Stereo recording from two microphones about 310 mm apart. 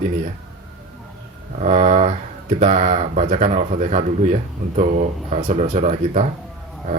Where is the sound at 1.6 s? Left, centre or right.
Right.